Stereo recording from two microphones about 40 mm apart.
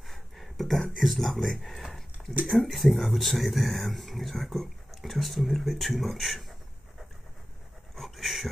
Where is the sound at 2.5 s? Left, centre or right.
Centre.